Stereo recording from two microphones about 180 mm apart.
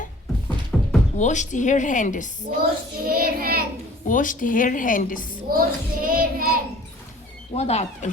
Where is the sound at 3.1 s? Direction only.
55° right (ahead or behind).